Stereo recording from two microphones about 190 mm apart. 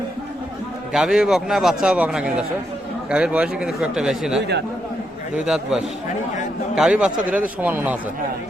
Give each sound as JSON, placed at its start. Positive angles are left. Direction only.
{"t": 0.9, "sound": "a man's voice", "side_deg": -5}
{"t": 4.4, "sound": "speech", "side_deg": -65}
{"t": 6.7, "sound": "a man's voice", "side_deg": -5}